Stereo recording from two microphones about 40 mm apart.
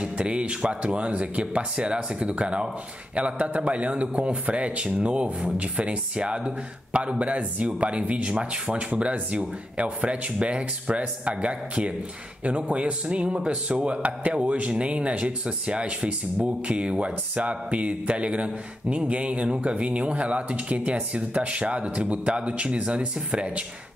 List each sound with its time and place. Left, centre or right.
0.0 s a man's voice: right